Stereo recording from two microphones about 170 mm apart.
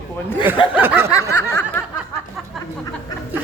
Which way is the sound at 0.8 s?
10° right (ahead or behind).